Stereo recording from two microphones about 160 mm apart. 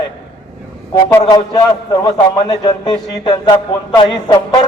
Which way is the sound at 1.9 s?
25° left (ahead or behind).